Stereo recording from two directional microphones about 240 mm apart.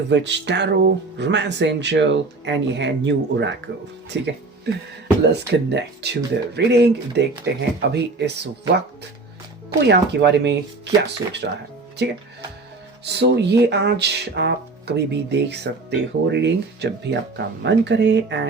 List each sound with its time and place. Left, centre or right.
0.1 s speech: right